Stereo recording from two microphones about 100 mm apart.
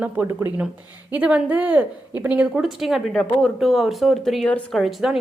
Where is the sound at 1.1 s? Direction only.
15° right (ahead or behind).